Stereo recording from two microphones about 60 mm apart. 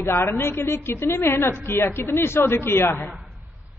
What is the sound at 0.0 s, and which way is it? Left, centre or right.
A woman's voice, left.